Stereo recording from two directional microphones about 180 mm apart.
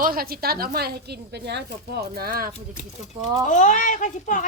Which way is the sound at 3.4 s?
45° left (ahead or behind).